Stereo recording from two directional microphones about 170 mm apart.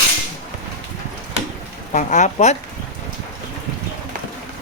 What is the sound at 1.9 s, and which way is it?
Speech, 45° left (ahead or behind).